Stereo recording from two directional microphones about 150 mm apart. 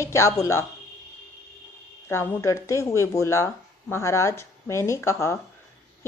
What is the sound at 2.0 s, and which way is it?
A woman's voice, 15° left (ahead or behind).